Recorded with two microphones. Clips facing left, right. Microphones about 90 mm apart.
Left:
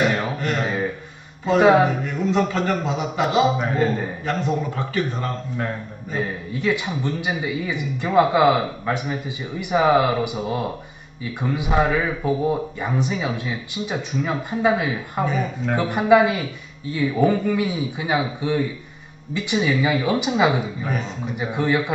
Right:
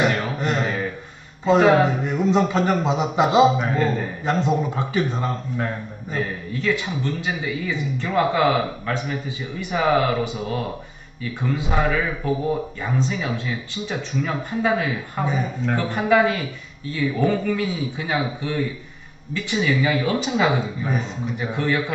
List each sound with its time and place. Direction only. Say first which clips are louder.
0.4 s a sound: right 1 dB; 20° right (ahead or behind)
1.6 s speech: left 2 dB; 15° left (ahead or behind)
2.0 s a man's voice: right 2 dB; 20° right (ahead or behind)
3.7 s speech: left 1 dB; 15° left (ahead or behind)
4.3 s a man's voice: right 3 dB; 20° right (ahead or behind)
6.1 s speech: left 1 dB; 15° left (ahead or behind)